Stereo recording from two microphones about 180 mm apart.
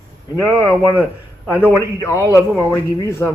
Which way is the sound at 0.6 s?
5° right (ahead or behind).